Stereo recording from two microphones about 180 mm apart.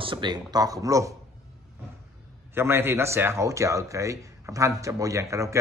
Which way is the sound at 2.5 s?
15° right (ahead or behind).